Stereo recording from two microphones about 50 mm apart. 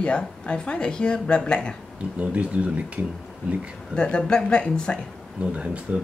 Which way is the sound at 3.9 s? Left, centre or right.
Centre.